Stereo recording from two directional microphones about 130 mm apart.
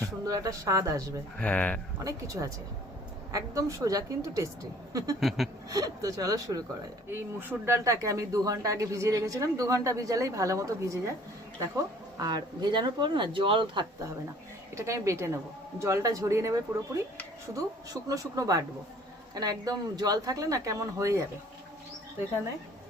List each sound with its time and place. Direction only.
0.3 s speech: 25° right (ahead or behind)
1.4 s speech: 10° left (ahead or behind)
2.0 s speech: 25° right (ahead or behind)
7.1 s speech: 15° right (ahead or behind); by 13.8 s 40° right (ahead or behind)
14.8 s speech: 25° right (ahead or behind)